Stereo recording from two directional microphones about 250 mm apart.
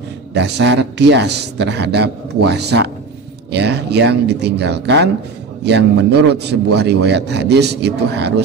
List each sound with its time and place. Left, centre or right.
0.3 s a man's voice: right